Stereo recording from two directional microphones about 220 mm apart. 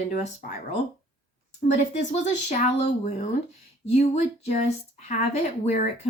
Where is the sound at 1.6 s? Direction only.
35° left (ahead or behind).